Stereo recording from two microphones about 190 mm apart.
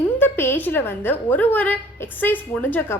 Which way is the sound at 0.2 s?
10° left (ahead or behind).